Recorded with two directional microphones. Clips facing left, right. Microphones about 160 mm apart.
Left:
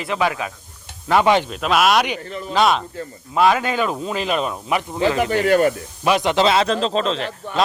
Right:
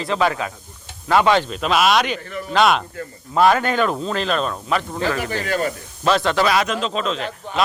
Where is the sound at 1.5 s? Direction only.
Centre (ahead or behind).